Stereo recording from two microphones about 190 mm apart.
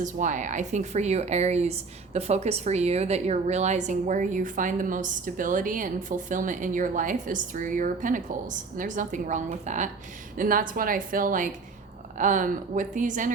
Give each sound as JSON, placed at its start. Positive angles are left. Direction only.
{"t": 0.0, "sound": "a woman's voice", "side_deg": -40}